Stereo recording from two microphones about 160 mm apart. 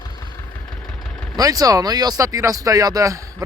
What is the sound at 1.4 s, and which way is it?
Speech, 20° right (ahead or behind).